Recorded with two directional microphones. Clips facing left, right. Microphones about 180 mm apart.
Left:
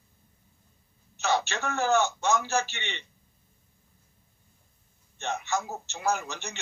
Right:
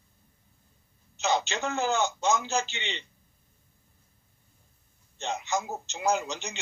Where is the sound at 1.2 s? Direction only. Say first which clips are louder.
Even; 20° right (ahead or behind).